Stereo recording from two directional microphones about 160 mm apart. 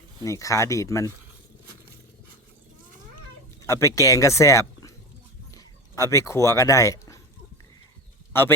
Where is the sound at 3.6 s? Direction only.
20° left (ahead or behind).